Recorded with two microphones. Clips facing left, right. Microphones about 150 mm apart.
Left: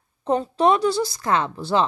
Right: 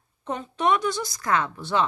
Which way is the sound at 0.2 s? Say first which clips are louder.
Left 7 dB; 35° left (ahead or behind).